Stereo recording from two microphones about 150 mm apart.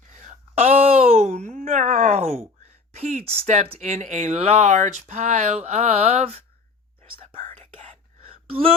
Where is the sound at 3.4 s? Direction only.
45° right (ahead or behind).